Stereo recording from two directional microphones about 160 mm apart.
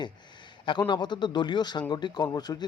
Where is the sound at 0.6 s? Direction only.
30° left (ahead or behind).